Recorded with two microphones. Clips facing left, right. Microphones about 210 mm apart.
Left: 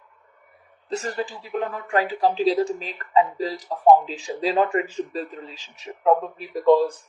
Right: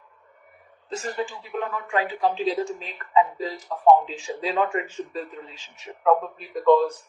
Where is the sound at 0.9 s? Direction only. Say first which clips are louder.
Left 2 dB; 35° left (ahead or behind).